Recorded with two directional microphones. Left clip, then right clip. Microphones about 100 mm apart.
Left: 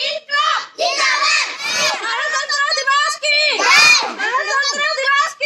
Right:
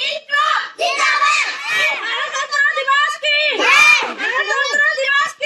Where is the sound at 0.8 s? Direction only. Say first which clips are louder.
Right 1 dB; 30° left (ahead or behind).